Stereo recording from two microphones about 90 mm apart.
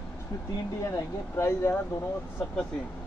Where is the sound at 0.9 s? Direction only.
30° left (ahead or behind).